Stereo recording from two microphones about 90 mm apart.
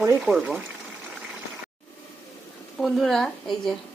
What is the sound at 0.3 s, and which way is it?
Speech, 5° right (ahead or behind).